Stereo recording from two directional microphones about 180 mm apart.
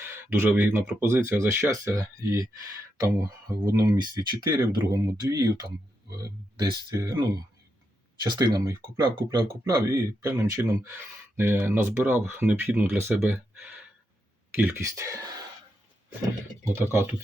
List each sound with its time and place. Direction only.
0.0 s speech: 10° right (ahead or behind)
16.6 s speech: 15° right (ahead or behind)